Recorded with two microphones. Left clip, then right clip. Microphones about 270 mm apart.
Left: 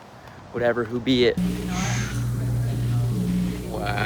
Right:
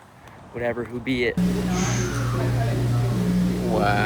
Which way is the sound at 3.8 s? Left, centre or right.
Centre.